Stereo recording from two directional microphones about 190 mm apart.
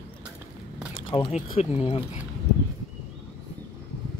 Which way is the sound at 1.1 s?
30° left (ahead or behind).